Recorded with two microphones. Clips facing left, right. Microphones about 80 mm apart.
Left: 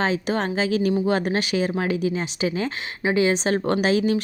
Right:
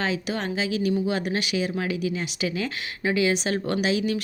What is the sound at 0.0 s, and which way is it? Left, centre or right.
Speech, left.